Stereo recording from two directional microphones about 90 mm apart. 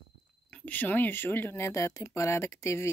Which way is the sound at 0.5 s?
20° left (ahead or behind).